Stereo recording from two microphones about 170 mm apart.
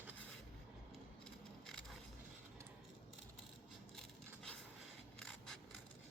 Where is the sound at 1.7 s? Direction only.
Centre (ahead or behind).